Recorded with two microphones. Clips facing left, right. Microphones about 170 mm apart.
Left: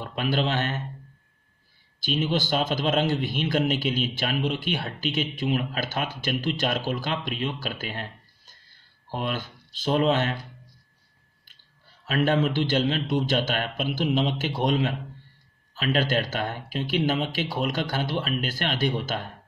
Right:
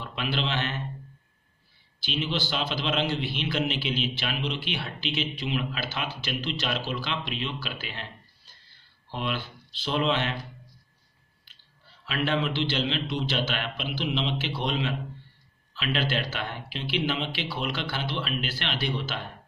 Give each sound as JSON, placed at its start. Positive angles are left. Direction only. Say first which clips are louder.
{"t": 0.0, "sound": "a man's voice", "louder": "left 5 dB", "side_deg": 45}
{"t": 2.0, "sound": "a man's voice", "louder": "left 5 dB", "side_deg": 45}
{"t": 8.6, "sound": "a sound", "louder": "left 5 dB", "side_deg": 45}
{"t": 12.0, "sound": "a man's voice", "louder": "left 5 dB", "side_deg": 45}